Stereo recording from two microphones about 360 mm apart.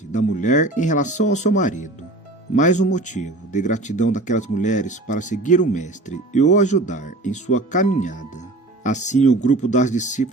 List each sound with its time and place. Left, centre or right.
0.1 s speech: centre